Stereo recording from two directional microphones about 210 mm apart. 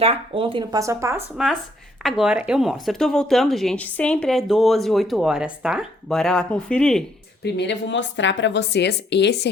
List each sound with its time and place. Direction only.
0.0 s speech: 25° right (ahead or behind)
2.0 s speech: centre (ahead or behind)
7.4 s a woman's voice: 55° left (ahead or behind)